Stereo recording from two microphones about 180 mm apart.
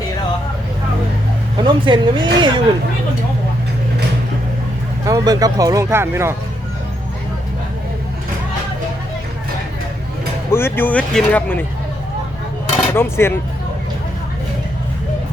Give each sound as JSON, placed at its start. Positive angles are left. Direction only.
{"t": 1.5, "sound": "speech", "side_deg": -25}
{"t": 5.0, "sound": "speech", "side_deg": -20}
{"t": 10.5, "sound": "speech", "side_deg": 10}
{"t": 12.9, "sound": "speech", "side_deg": 15}